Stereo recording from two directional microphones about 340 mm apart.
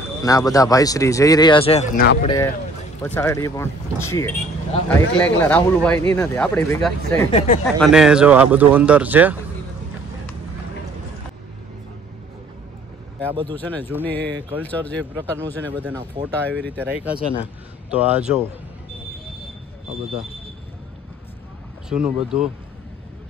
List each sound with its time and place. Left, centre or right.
0.2 s speech: centre
2.2 s speech: centre
7.3 s speech: centre
7.6 s speech: centre
13.5 s speech: centre
17.2 s speech: centre
17.8 s speech: centre
21.8 s speech: centre